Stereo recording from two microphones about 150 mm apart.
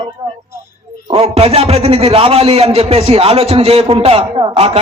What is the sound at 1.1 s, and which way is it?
A man's voice, 40° right (ahead or behind).